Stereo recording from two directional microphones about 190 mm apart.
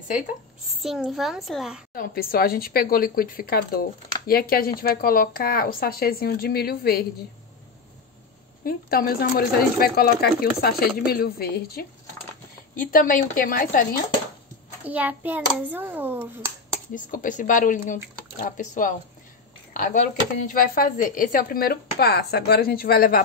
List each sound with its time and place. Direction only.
0.8 s a child's voice: centre (ahead or behind)
2.0 s speech: 50° left (ahead or behind)
8.6 s speech: 55° left (ahead or behind)
12.8 s speech: 45° left (ahead or behind)
14.8 s a child's voice: 10° right (ahead or behind)
16.9 s speech: 45° left (ahead or behind)